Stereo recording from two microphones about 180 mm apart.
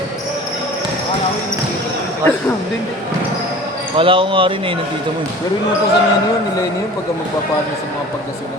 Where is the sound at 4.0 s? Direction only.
30° right (ahead or behind).